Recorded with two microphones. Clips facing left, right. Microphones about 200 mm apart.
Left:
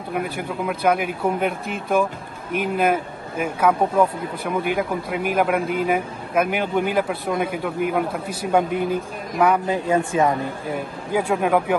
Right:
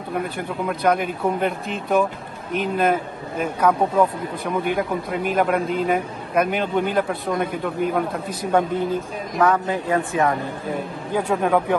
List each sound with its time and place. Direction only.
0.7 s a man's voice: 5° left (ahead or behind)
11.1 s speech: 5° left (ahead or behind)